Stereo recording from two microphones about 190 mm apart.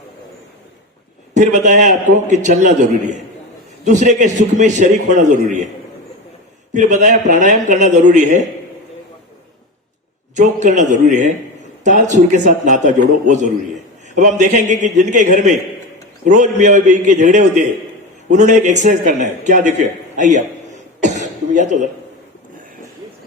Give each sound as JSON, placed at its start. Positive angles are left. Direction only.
{"t": 1.3, "sound": "a man's voice", "side_deg": -40}
{"t": 6.7, "sound": "a man's voice", "side_deg": -40}
{"t": 10.3, "sound": "a man's voice", "side_deg": -40}
{"t": 21.0, "sound": "cough", "side_deg": -40}